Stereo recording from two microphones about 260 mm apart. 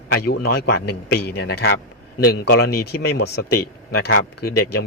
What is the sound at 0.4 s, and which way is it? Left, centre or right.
A man's voice, left.